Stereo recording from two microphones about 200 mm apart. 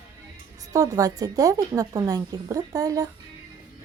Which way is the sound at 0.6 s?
15° right (ahead or behind).